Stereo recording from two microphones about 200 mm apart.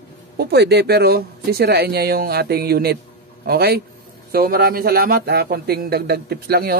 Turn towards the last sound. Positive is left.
turn(degrees=-50)  # may be behind; listen again after turning